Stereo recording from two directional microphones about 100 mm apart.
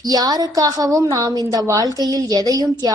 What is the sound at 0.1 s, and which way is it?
A woman's voice, 40° right (ahead or behind).